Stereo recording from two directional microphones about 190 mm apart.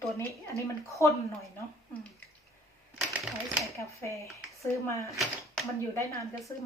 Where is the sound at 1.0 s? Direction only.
15° left (ahead or behind).